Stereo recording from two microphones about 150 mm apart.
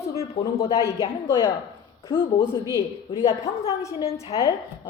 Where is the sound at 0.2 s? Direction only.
20° left (ahead or behind).